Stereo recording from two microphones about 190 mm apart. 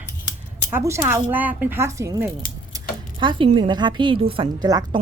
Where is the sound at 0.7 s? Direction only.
15° right (ahead or behind).